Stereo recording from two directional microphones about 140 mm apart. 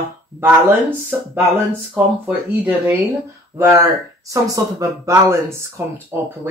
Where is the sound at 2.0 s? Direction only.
10° right (ahead or behind).